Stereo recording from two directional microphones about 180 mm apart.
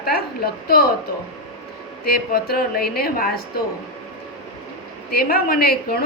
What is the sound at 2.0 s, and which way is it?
A woman's voice, 55° left (ahead or behind).